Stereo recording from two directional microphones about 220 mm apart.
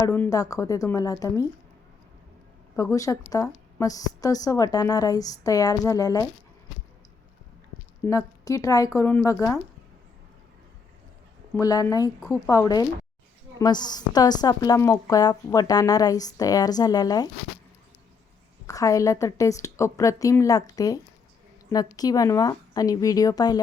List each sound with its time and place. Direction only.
0.1 s a woman's voice: 10° left (ahead or behind)
2.7 s a woman's voice: 15° left (ahead or behind)
8.0 s a woman's voice: 15° left (ahead or behind)
11.5 s a woman's voice: 15° left (ahead or behind)
18.6 s a woman's voice: 15° left (ahead or behind)